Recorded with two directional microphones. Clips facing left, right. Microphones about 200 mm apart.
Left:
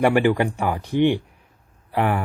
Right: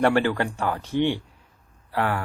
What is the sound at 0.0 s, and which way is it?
Speech, 15° left (ahead or behind).